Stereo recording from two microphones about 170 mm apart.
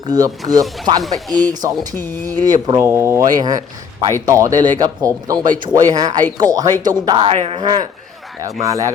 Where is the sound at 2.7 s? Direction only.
15° right (ahead or behind).